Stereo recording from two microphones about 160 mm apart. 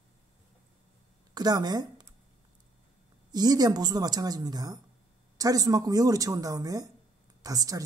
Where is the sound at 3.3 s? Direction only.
25° right (ahead or behind).